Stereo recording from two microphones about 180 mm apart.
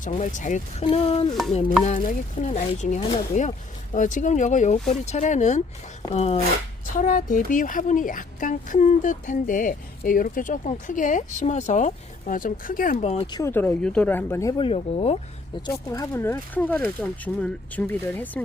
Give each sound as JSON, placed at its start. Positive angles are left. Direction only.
{"t": 0.0, "sound": "speech", "side_deg": 45}
{"t": 0.9, "sound": "speech", "side_deg": 35}
{"t": 6.9, "sound": "speech", "side_deg": 50}
{"t": 13.0, "sound": "speech", "side_deg": 35}
{"t": 13.3, "sound": "speech", "side_deg": 15}
{"t": 14.6, "sound": "speech", "side_deg": 35}
{"t": 15.6, "sound": "speech", "side_deg": 20}